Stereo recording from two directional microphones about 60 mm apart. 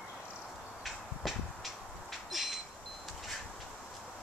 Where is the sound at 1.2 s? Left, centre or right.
Centre.